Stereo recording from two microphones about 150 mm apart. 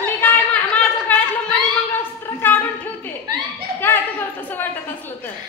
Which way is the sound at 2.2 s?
15° left (ahead or behind).